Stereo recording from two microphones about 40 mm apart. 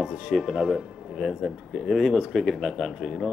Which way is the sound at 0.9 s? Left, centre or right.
Centre.